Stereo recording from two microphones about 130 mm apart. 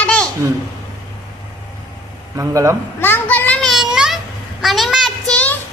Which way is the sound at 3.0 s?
15° left (ahead or behind).